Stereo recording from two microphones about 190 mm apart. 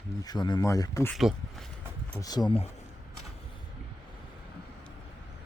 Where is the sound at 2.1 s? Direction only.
20° left (ahead or behind).